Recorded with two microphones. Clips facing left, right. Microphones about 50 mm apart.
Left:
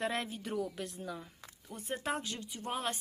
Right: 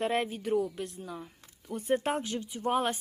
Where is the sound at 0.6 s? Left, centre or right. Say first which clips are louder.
Right 3 dB; centre.